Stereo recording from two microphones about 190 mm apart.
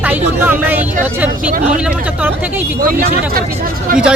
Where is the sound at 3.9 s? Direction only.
50° right (ahead or behind).